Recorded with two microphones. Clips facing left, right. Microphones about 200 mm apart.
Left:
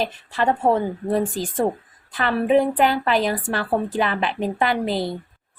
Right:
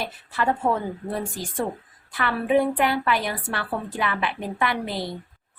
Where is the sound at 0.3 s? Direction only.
30° left (ahead or behind).